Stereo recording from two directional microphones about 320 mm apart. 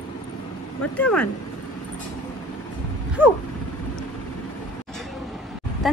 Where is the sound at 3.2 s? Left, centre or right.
Centre.